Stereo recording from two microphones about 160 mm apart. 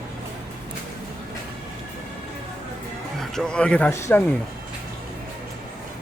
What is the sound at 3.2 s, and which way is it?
Music, 5° left (ahead or behind).